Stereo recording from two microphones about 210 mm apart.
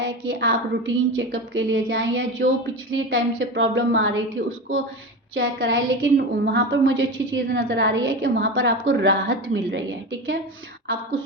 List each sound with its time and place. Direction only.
0.0 s a woman's voice: 60° right (ahead or behind)